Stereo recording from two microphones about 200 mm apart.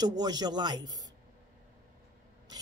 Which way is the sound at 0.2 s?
20° right (ahead or behind).